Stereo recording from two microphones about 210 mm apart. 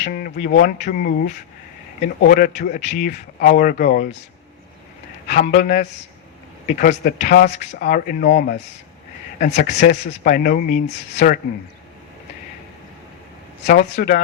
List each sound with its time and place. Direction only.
0.0 s speech: 40° left (ahead or behind)
5.3 s speech: 40° left (ahead or behind)
13.9 s speech: 40° left (ahead or behind)